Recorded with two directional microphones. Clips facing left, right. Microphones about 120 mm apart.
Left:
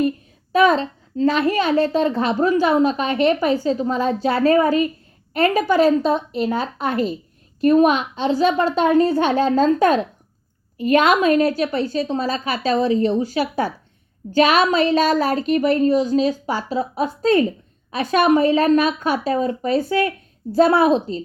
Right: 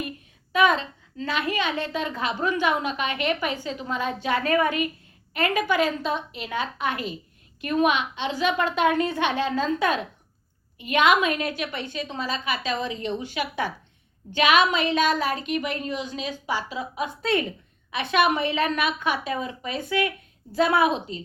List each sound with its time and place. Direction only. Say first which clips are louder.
0.5 s a woman's voice: left 6 dB; 35° left (ahead or behind)